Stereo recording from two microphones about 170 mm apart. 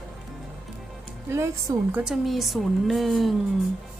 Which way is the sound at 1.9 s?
5° right (ahead or behind).